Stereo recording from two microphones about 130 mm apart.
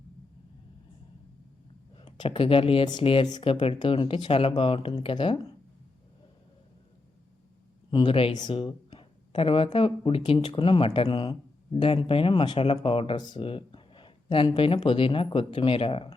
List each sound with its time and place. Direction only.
2.0 s speech: 40° left (ahead or behind)
7.9 s speech: 40° left (ahead or behind)
11.1 s speech: 35° left (ahead or behind)
11.7 s speech: 45° left (ahead or behind)